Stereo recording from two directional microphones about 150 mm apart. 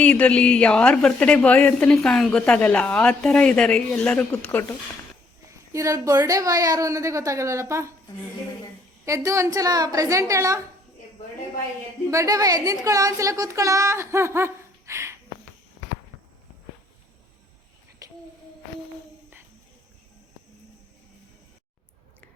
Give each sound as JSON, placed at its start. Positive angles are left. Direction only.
{"t": 0.0, "sound": "speech", "side_deg": 10}
{"t": 5.5, "sound": "speech", "side_deg": -20}
{"t": 9.0, "sound": "speech", "side_deg": -20}
{"t": 12.1, "sound": "speech", "side_deg": -25}
{"t": 18.0, "sound": "a sound", "side_deg": -25}